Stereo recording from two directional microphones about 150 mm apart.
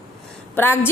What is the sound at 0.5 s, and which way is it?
Speech, 15° left (ahead or behind).